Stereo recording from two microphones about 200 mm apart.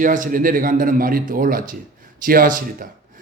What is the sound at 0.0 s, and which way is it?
A man's voice, 40° right (ahead or behind).